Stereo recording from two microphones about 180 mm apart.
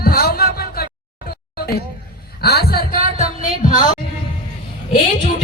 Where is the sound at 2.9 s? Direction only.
35° right (ahead or behind).